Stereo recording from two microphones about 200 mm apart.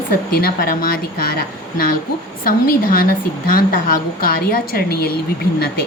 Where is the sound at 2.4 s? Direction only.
45° left (ahead or behind).